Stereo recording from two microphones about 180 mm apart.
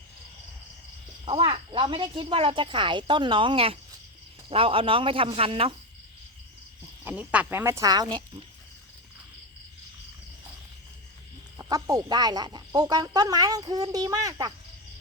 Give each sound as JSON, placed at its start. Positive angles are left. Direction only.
{"t": 1.2, "sound": "speech", "side_deg": -30}
{"t": 7.0, "sound": "speech", "side_deg": -10}
{"t": 11.5, "sound": "speech", "side_deg": -20}